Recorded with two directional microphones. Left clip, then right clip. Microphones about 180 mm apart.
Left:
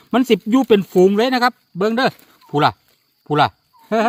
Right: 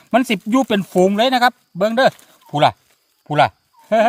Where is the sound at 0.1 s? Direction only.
25° right (ahead or behind).